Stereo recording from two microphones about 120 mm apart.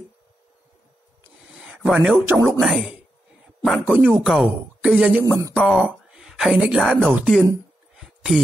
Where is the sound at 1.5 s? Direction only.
10° right (ahead or behind).